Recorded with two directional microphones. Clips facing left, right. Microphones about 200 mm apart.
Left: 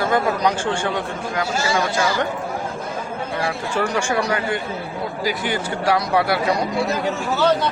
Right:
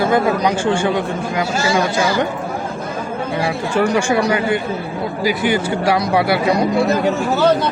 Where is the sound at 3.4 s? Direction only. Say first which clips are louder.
Right 5 dB; 10° right (ahead or behind).